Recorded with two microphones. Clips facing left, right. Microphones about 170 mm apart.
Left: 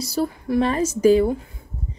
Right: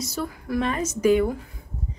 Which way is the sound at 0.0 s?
35° left (ahead or behind).